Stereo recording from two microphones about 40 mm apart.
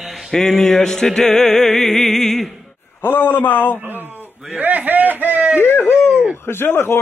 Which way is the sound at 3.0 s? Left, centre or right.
Left.